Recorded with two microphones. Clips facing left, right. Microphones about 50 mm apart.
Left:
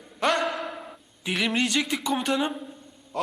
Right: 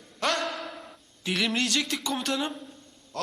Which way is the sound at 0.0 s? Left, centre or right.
Centre.